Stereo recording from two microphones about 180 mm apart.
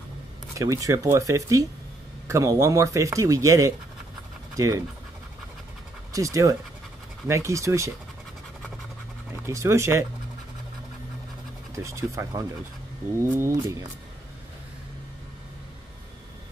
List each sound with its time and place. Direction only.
0.6 s speech: 20° right (ahead or behind)
6.1 s speech: 15° right (ahead or behind)
9.5 s speech: 15° right (ahead or behind)
11.7 s speech: 15° right (ahead or behind)